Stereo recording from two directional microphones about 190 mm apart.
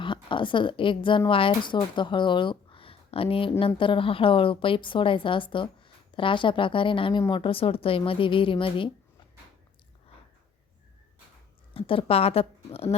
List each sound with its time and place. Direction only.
0.0 s a woman's voice: 25° left (ahead or behind)
11.7 s a woman's voice: 30° left (ahead or behind)